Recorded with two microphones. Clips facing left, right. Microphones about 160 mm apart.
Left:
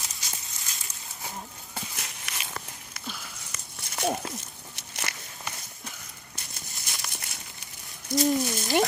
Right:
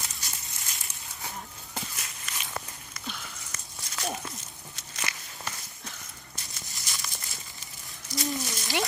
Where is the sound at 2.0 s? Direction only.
70° left (ahead or behind).